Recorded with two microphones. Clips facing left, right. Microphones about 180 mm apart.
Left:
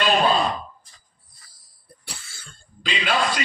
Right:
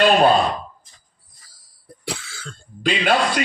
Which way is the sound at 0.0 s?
55° right (ahead or behind).